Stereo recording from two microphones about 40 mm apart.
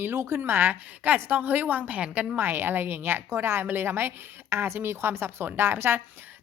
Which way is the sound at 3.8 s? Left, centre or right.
Right.